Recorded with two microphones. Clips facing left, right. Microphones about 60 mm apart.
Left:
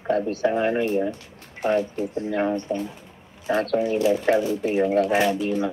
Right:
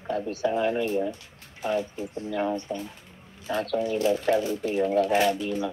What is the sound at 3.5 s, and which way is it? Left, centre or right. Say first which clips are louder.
Speech: left 5 dB; left.